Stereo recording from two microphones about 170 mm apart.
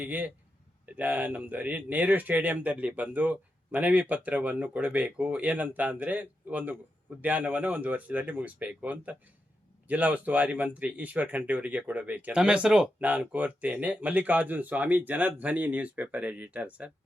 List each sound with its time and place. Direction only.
0.0 s speech: 10° right (ahead or behind)